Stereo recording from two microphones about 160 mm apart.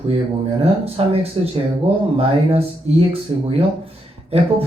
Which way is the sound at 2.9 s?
40° right (ahead or behind).